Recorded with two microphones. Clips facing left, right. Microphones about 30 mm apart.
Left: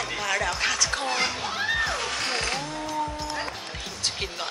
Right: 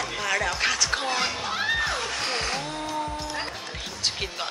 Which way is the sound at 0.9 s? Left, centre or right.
Centre.